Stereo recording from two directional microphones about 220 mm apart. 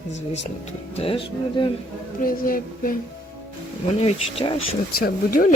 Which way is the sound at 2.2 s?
40° left (ahead or behind).